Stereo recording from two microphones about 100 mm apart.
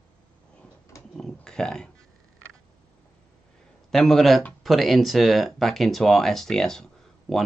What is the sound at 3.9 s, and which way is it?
Speech, 5° left (ahead or behind).